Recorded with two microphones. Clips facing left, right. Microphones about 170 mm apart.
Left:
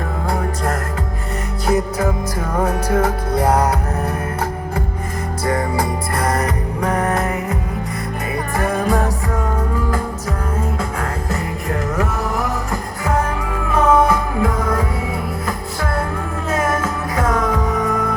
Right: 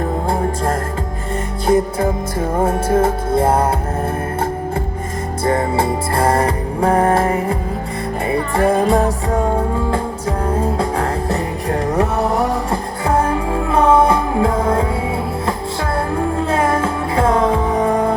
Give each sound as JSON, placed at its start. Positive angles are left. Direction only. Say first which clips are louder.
{"t": 0.3, "sound": "music", "louder": "even", "side_deg": -30}
{"t": 5.5, "sound": "music", "louder": "right 3 dB", "side_deg": -25}
{"t": 16.5, "sound": "music", "louder": "left 1 dB", "side_deg": -30}